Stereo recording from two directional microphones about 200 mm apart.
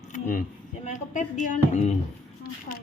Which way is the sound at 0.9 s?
35° left (ahead or behind).